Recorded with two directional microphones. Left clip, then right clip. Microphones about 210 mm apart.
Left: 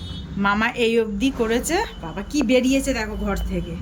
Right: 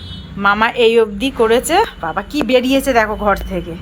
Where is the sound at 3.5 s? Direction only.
35° right (ahead or behind).